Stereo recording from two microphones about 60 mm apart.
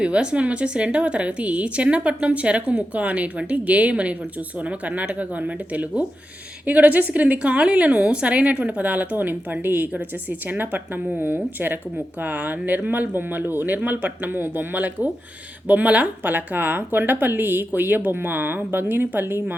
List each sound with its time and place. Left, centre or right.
0.0 s speech: centre; by 19.5 s right